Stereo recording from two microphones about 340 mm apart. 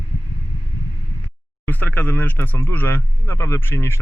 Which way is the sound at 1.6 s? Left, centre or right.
Centre.